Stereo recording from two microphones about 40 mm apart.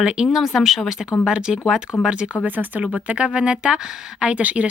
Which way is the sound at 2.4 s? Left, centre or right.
Right.